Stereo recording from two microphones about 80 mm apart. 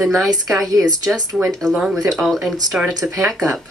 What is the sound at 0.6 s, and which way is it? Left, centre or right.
Speech, right.